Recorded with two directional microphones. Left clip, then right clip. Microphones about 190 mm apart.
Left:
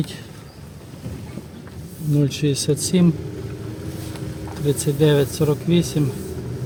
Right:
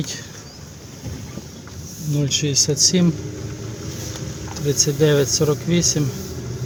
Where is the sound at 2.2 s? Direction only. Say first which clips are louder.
Right 3 dB; 20° left (ahead or behind).